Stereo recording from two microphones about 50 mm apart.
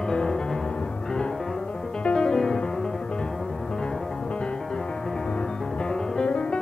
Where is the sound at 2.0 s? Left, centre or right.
Centre.